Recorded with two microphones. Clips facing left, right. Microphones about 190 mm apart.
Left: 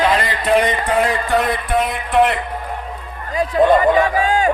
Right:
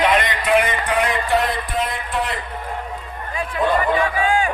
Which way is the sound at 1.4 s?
70° left (ahead or behind).